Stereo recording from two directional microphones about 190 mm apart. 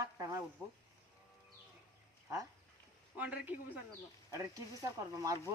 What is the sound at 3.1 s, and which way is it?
Speech, 10° right (ahead or behind).